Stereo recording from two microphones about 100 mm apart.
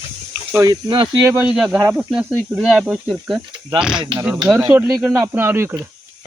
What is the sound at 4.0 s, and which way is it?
Speech, 45° right (ahead or behind).